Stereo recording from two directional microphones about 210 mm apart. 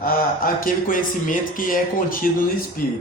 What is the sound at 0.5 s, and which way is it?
Speech, 40° left (ahead or behind).